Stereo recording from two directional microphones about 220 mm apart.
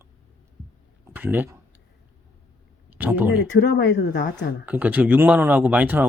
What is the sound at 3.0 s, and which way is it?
Speech, 10° right (ahead or behind).